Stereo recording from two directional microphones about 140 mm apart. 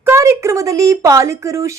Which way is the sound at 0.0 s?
20° right (ahead or behind).